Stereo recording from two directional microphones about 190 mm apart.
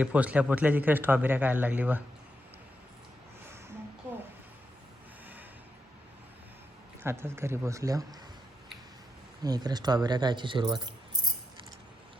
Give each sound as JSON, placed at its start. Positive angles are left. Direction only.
{"t": 0.0, "sound": "a man's voice", "side_deg": -5}
{"t": 7.0, "sound": "a man's voice", "side_deg": -15}
{"t": 9.4, "sound": "speech", "side_deg": -20}